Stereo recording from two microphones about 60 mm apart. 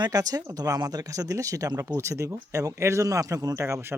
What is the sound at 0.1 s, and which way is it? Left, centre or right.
Speech, right.